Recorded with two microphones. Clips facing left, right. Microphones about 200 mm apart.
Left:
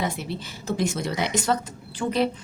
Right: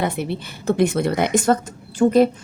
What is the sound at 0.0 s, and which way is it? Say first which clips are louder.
Speech: right 5 dB; 60° right (ahead or behind).